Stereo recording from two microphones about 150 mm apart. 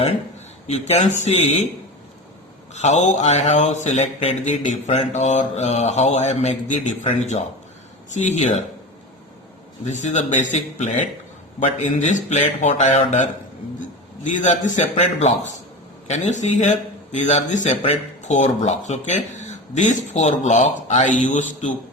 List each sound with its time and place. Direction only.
0.7 s a man's voice: 45° left (ahead or behind)
2.7 s a man's voice: 50° left (ahead or behind)
9.8 s a man's voice: 50° left (ahead or behind)
14.3 s a man's voice: 55° left (ahead or behind)